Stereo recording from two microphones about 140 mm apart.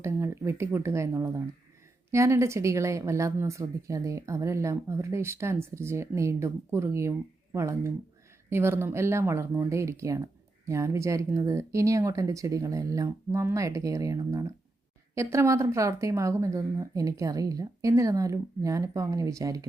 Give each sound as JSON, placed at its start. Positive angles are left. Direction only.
{"t": 0.0, "sound": "speech", "side_deg": -20}